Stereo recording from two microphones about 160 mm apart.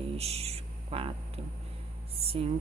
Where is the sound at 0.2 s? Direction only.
40° right (ahead or behind).